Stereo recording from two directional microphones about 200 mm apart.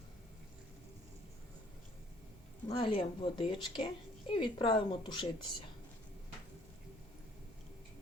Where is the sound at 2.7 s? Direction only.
30° left (ahead or behind).